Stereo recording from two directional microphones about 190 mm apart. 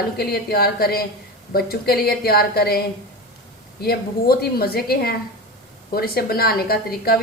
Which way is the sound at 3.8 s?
55° left (ahead or behind).